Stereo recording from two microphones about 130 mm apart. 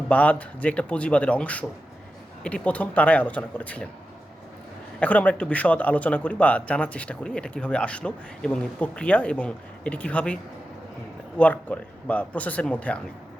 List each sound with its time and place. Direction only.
0.1 s speech: 10° left (ahead or behind)
4.9 s speech: 10° left (ahead or behind)
11.3 s speech: 10° left (ahead or behind)